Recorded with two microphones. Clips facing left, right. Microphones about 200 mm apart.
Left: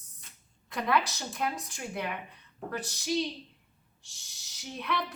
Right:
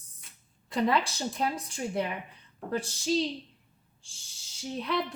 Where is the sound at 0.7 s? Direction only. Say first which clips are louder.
Right 2 dB; 30° right (ahead or behind).